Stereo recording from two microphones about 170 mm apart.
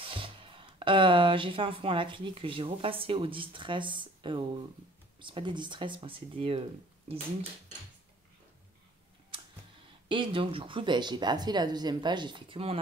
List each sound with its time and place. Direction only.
0.0 s speech: 30° right (ahead or behind)
10.0 s speech: 30° right (ahead or behind)